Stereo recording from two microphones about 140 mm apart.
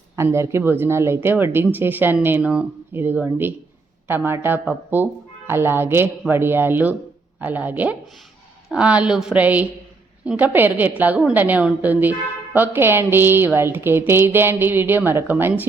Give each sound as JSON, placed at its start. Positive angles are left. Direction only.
{"t": 0.2, "sound": "speech", "side_deg": -20}